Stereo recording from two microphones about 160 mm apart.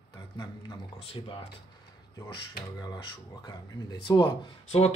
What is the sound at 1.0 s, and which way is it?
Speech, 35° left (ahead or behind).